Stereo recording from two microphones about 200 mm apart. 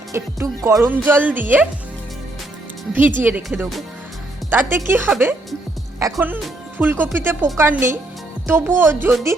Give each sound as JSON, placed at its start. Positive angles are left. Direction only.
{"t": 0.1, "sound": "speech", "side_deg": -15}
{"t": 3.2, "sound": "speech", "side_deg": -10}
{"t": 6.0, "sound": "speech", "side_deg": -15}